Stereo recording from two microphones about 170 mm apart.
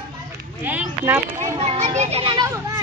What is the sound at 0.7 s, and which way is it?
Speech, 10° right (ahead or behind).